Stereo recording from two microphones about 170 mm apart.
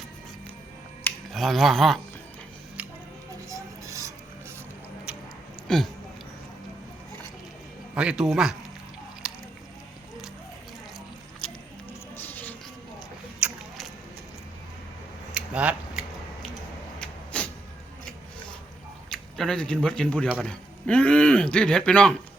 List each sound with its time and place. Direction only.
1.3 s speech: centre (ahead or behind)
3.5 s music: 20° right (ahead or behind)
5.6 s speech: centre (ahead or behind)
7.9 s speech: 5° right (ahead or behind)
9.2 s a sound: centre (ahead or behind)
11.4 s music: 5° left (ahead or behind)
13.4 s a sound: centre (ahead or behind)
15.3 s scissors: 5° right (ahead or behind)
17.0 s vehicle: 10° left (ahead or behind)
19.1 s a man's voice: 5° left (ahead or behind)